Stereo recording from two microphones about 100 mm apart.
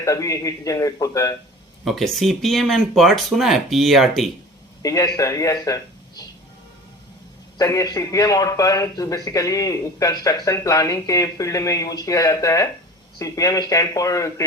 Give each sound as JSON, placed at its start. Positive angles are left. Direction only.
{"t": 0.0, "sound": "a man's voice", "side_deg": 30}
{"t": 1.8, "sound": "speech", "side_deg": 0}
{"t": 4.8, "sound": "a man's voice", "side_deg": 35}
{"t": 5.6, "sound": "a sound", "side_deg": 35}
{"t": 7.6, "sound": "a man's voice", "side_deg": 35}